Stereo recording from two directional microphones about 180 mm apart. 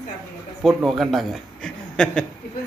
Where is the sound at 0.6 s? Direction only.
Centre (ahead or behind).